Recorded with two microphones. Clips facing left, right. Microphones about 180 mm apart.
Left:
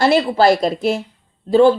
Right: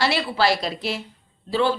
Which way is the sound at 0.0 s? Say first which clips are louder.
Left 8 dB; 45° left (ahead or behind).